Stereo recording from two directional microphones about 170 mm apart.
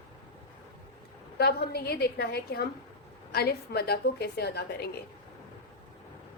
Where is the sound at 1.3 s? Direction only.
70° left (ahead or behind).